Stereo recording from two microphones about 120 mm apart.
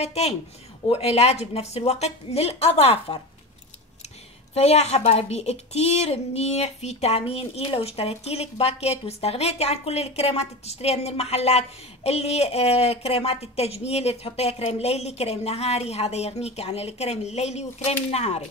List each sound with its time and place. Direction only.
0.0 s a woman's voice: 60° left (ahead or behind)
4.6 s a woman's voice: 60° left (ahead or behind)